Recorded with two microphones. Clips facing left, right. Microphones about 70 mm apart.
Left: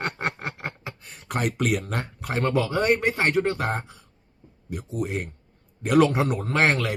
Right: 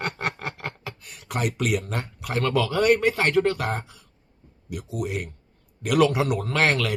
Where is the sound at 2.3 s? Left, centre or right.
Left.